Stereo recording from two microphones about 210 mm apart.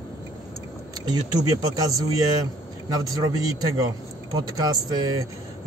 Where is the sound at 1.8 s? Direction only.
15° right (ahead or behind).